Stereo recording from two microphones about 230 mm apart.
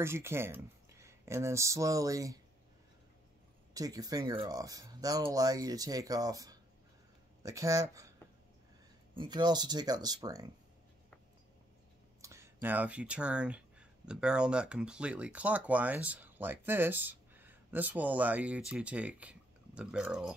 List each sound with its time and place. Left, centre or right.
0.0 s speech: centre
3.7 s speech: centre
9.1 s speech: centre
12.2 s speech: centre